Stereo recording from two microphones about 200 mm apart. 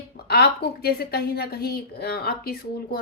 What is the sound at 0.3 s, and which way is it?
A woman's voice, 50° left (ahead or behind).